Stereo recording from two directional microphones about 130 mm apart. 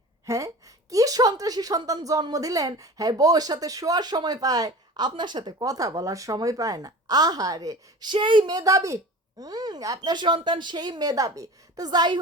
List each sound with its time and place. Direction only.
0.3 s a woman's voice: 25° right (ahead or behind)